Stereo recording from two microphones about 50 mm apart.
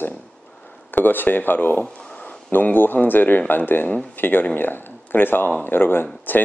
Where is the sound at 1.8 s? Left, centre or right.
Centre.